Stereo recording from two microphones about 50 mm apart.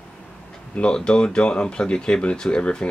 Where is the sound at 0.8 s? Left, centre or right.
Centre.